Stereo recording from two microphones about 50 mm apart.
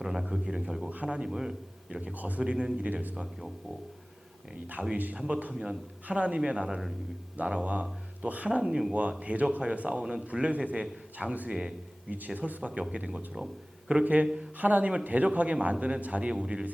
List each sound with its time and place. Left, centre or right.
0.0 s a man's voice: centre
0.9 s speech: right
2.1 s speech: right
4.6 s speech: right
5.1 s a man's voice: centre
6.1 s a man's voice: right
8.4 s a man's voice: centre
10.0 s a man's voice: centre; by 12.8 s right
12.9 s speech: centre
13.3 s a sound: centre
14.0 s speech: right
16.3 s speech: centre